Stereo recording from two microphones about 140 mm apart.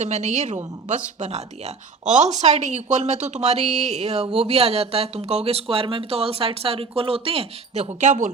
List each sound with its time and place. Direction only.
0.0 s speech: 55° right (ahead or behind)